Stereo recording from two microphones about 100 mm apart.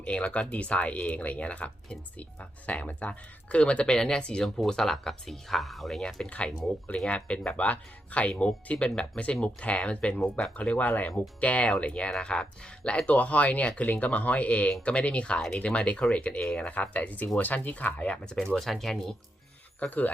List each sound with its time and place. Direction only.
0.0 s speech: 10° left (ahead or behind)
19.8 s speech: 15° left (ahead or behind)